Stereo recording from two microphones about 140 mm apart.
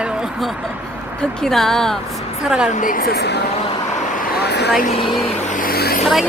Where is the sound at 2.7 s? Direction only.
70° left (ahead or behind); by 3.2 s 90° left.